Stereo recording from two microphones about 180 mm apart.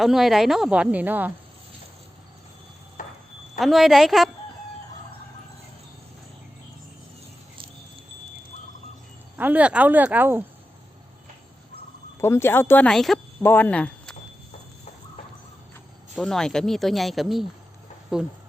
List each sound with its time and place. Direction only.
0.0 s speech: centre (ahead or behind)
3.0 s a sound: 50° left (ahead or behind)
3.6 s speech: centre (ahead or behind)
9.4 s speech: 10° right (ahead or behind)
12.2 s speech: 15° left (ahead or behind)
16.1 s speech: 5° left (ahead or behind)